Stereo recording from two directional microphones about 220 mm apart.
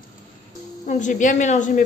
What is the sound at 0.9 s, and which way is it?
Speech, 35° left (ahead or behind).